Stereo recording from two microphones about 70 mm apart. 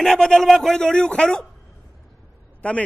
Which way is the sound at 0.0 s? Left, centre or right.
Centre.